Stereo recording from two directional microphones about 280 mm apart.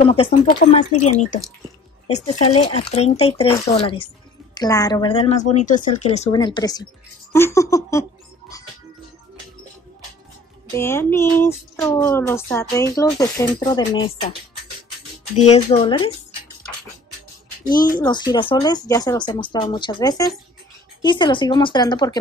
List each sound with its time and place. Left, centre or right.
0.0 s speech: left
10.7 s speech: centre
15.3 s speech: left
17.6 s speech: left
18.0 s speech: centre